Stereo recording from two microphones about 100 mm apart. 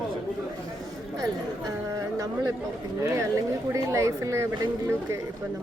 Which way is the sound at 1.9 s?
35° right (ahead or behind).